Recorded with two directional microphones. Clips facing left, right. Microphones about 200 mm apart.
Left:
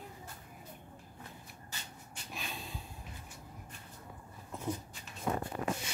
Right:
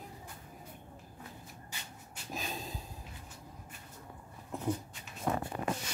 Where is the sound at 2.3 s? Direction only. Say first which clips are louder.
Right 4 dB; 40° right (ahead or behind).